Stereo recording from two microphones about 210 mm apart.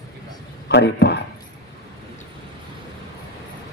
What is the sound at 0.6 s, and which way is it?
Speech, 50° left (ahead or behind).